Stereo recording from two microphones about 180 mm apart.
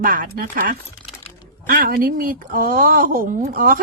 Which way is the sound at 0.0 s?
50° right (ahead or behind).